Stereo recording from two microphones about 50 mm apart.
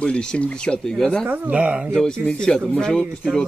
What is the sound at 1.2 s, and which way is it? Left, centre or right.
Speech, right.